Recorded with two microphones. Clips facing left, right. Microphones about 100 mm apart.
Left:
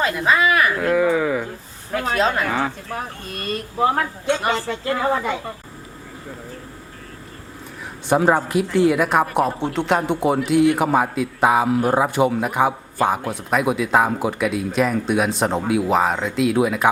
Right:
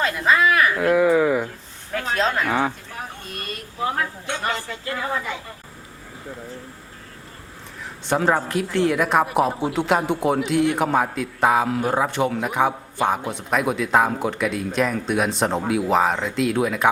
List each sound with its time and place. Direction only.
0.0 s a man's voice: 5° left (ahead or behind)
4.5 s a woman's voice: 40° left (ahead or behind)
8.0 s a man's voice: 10° left (ahead or behind)